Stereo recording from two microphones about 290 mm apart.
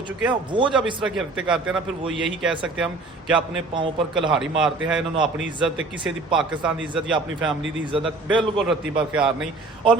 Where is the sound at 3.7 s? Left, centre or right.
Centre.